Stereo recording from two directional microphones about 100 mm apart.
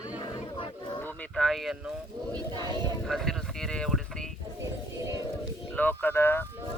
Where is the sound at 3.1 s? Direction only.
5° left (ahead or behind).